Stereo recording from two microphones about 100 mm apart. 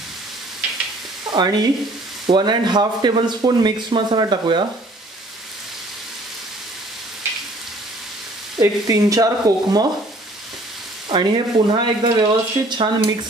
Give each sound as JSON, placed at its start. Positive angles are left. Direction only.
{"t": 1.3, "sound": "speech", "side_deg": -45}
{"t": 8.5, "sound": "stir", "side_deg": -35}
{"t": 11.1, "sound": "speech", "side_deg": -50}